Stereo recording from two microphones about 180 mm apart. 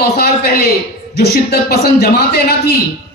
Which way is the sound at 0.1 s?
60° left (ahead or behind).